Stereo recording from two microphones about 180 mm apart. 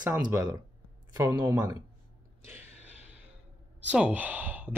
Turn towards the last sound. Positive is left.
turn(degrees=-10)  # may be behind; listen again after turning